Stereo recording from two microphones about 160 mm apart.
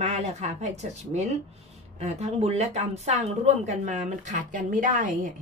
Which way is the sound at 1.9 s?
45° right (ahead or behind).